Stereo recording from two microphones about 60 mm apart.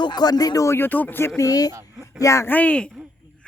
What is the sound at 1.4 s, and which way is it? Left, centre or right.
Speech, left.